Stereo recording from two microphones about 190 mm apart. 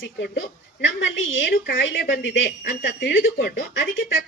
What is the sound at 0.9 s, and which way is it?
Speech, 90° left.